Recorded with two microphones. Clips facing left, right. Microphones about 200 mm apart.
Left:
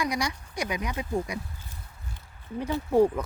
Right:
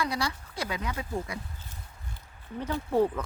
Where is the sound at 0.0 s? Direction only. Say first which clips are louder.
Left 2 dB; 15° left (ahead or behind).